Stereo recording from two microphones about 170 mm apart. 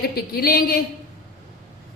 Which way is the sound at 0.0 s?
60° left (ahead or behind).